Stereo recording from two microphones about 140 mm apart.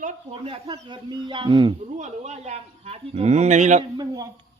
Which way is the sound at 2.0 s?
55° right (ahead or behind).